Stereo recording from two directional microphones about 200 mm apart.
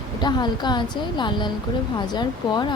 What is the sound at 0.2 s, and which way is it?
Speech, 20° left (ahead or behind).